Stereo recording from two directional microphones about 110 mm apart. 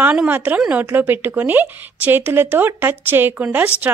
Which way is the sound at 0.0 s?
15° right (ahead or behind).